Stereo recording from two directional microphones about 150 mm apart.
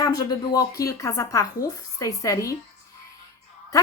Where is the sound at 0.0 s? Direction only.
25° left (ahead or behind).